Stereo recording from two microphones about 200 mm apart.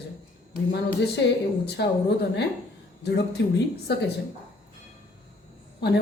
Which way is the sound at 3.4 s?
60° left (ahead or behind).